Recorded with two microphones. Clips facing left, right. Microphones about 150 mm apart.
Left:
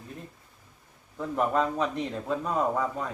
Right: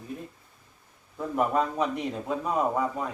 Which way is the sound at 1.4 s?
10° right (ahead or behind).